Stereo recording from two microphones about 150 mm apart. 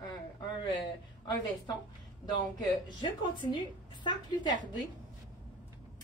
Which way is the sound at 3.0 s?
30° left (ahead or behind).